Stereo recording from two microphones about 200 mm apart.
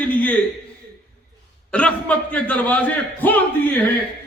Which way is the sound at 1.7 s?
5° left (ahead or behind).